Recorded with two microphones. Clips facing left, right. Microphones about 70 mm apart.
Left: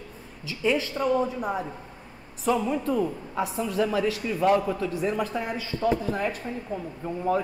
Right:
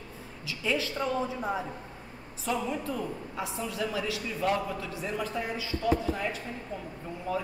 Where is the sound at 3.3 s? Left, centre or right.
Left.